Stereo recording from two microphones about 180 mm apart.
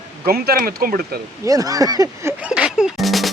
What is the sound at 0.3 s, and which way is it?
Speech, 60° right (ahead or behind).